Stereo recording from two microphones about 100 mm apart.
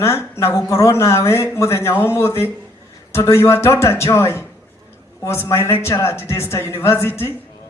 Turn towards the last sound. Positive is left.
turn(degrees=25)  # may be behind; listen again after turning